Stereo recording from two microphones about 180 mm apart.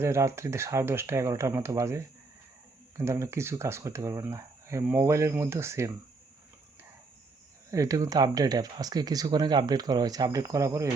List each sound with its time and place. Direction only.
0.0 s speech: 15° right (ahead or behind)
3.0 s speech: 15° right (ahead or behind)
7.7 s speech: 20° right (ahead or behind)